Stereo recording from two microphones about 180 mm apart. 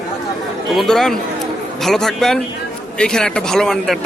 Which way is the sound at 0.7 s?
Centre (ahead or behind).